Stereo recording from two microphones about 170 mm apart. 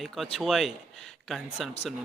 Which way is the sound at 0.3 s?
Centre (ahead or behind).